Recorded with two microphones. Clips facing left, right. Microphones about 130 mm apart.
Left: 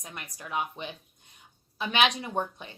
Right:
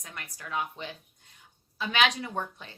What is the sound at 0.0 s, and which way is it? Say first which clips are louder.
A woman's voice: left 1 dB; 20° left (ahead or behind).